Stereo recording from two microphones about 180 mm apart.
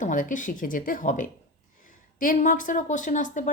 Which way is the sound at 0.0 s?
45° left (ahead or behind).